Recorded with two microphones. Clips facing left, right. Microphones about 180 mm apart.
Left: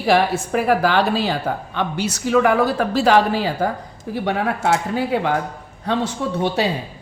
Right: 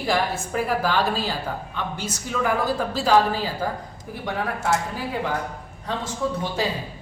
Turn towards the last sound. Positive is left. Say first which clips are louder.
# left 5 dB
turn(degrees=70)  # may be behind; listen again after turning